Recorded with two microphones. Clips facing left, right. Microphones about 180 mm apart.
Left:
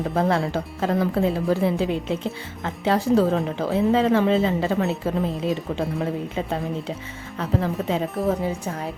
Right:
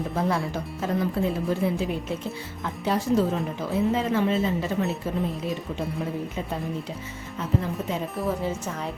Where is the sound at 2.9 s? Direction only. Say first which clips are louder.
Left 4 dB; 85° left.